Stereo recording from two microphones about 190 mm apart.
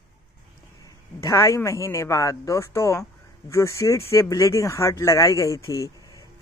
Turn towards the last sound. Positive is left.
turn(degrees=20)  # may be behind; listen again after turning